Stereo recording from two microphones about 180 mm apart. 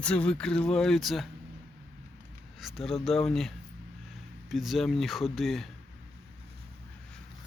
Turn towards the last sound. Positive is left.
turn(degrees=0)  # may be behind; listen again after turning